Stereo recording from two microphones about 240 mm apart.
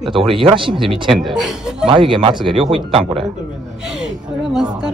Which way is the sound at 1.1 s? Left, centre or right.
Centre.